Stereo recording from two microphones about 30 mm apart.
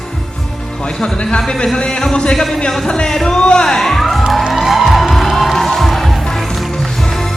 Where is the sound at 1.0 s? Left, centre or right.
Left.